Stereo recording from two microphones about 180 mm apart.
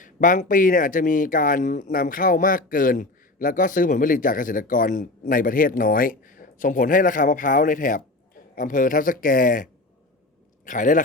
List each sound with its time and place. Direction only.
0.0 s speech: 45° left (ahead or behind)
10.7 s speech: 45° left (ahead or behind)